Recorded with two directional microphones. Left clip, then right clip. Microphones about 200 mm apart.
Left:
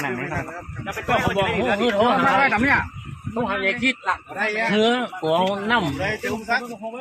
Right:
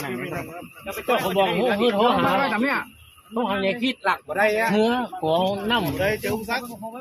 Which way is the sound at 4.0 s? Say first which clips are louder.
Right 3 dB; 55° right (ahead or behind).